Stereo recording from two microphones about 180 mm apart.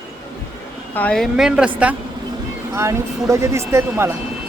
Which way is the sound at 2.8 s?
15° right (ahead or behind).